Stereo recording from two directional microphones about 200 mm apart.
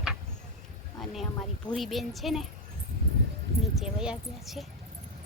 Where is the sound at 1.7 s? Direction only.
Centre (ahead or behind).